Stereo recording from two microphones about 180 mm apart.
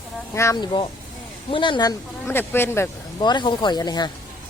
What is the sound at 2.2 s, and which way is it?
Speech, 10° left (ahead or behind).